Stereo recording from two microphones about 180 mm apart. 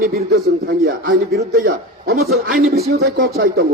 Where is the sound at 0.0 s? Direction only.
60° right (ahead or behind).